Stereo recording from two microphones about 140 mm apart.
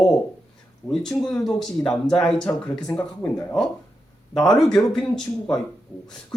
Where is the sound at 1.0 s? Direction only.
5° left (ahead or behind).